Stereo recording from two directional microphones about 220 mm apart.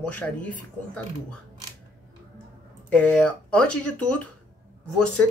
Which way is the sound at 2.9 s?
5° left (ahead or behind).